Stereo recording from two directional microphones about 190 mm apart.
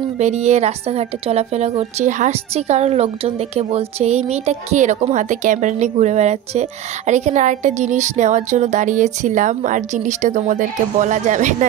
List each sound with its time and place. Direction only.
0.2 s a woman's voice: 35° right (ahead or behind)